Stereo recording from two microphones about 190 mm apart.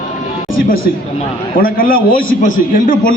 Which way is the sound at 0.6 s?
50° left (ahead or behind).